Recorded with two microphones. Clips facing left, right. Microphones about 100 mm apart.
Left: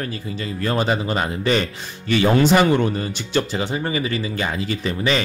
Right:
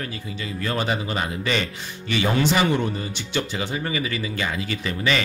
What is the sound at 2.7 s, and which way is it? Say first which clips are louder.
Speech: left 5 dB; 60° left (ahead or behind).